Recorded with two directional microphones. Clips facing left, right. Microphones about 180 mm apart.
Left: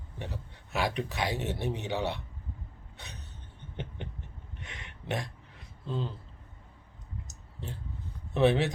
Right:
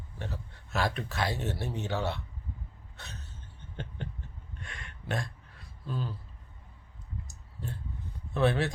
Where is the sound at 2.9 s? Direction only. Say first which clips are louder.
Right 1 dB; 15° left (ahead or behind).